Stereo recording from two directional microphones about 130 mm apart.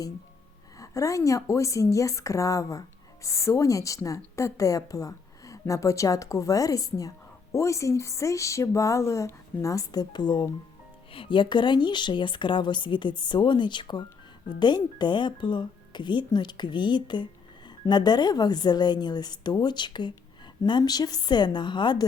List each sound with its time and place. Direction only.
0.8 s a woman's voice: 25° left (ahead or behind)